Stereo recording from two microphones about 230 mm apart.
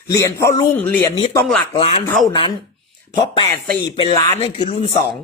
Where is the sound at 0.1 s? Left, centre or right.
Centre.